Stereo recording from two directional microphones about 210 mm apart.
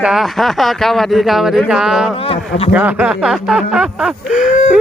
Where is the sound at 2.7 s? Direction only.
5° right (ahead or behind).